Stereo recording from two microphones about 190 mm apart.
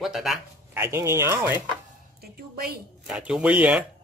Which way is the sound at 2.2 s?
55° right (ahead or behind).